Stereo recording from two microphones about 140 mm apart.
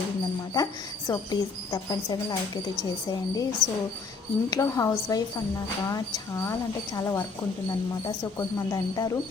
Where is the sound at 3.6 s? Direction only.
Centre (ahead or behind).